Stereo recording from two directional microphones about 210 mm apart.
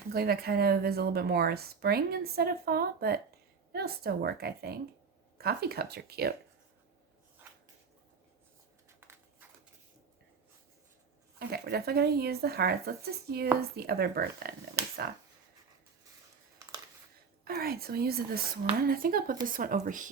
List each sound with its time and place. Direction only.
0.1 s speech: 45° right (ahead or behind)
7.4 s a sound: 10° right (ahead or behind)
11.3 s speech: 50° right (ahead or behind)
17.4 s speech: 45° right (ahead or behind)